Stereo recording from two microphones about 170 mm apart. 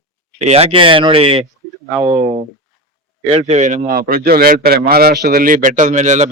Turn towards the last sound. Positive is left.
turn(degrees=-45)  # may be behind; listen again after turning